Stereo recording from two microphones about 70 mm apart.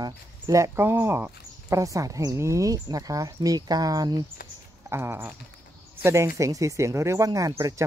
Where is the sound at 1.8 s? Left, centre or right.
Right.